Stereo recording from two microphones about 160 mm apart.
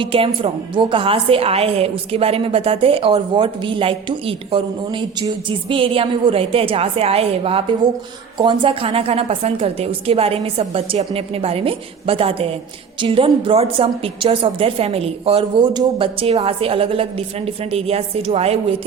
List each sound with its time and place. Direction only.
0.0 s a woman's voice: 35° right (ahead or behind)